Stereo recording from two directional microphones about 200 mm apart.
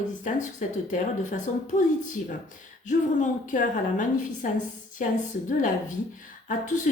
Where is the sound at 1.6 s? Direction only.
40° left (ahead or behind).